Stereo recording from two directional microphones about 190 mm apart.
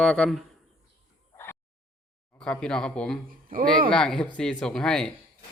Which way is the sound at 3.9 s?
5° left (ahead or behind).